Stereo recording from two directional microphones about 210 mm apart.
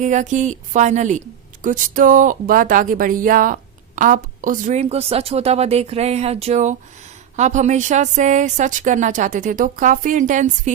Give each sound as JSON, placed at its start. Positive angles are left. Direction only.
{"t": 0.0, "sound": "speech", "side_deg": -35}